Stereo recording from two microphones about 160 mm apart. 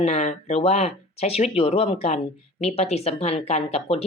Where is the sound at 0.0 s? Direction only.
45° left (ahead or behind).